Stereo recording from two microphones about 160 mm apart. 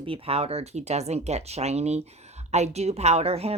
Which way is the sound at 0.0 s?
35° right (ahead or behind).